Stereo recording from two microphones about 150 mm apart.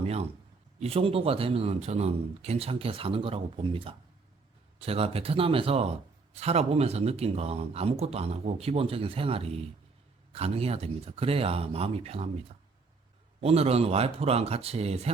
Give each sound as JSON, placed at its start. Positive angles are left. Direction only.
{"t": 0.0, "sound": "a man's voice", "side_deg": -45}
{"t": 13.4, "sound": "speech", "side_deg": -45}